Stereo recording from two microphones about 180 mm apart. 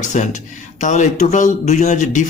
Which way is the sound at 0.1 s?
40° left (ahead or behind).